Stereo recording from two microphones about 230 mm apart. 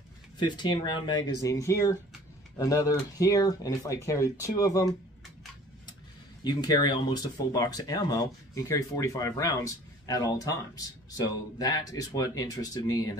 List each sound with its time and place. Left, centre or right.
0.4 s speech: centre
6.4 s speech: centre